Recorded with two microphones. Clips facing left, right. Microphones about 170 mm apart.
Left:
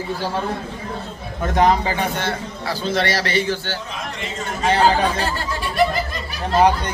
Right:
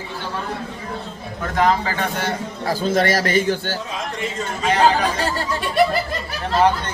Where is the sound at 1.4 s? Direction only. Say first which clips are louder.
Left 2 dB; 20° left (ahead or behind).